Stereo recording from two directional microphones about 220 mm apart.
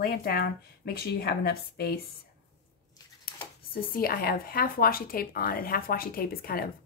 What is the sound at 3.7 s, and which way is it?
Speech, 40° left (ahead or behind).